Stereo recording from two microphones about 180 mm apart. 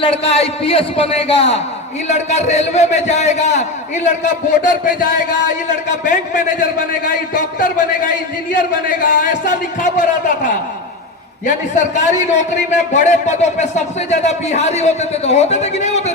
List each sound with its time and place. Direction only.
0.0 s a man's voice: 30° left (ahead or behind)
9.4 s a man's voice: 45° left (ahead or behind)